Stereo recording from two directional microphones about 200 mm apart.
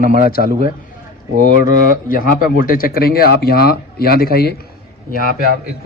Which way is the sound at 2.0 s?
45° left (ahead or behind).